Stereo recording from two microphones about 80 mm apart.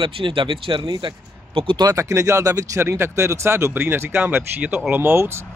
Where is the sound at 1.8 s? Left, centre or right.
Right.